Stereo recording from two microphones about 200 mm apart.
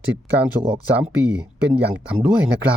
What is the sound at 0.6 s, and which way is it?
Speech, 30° right (ahead or behind).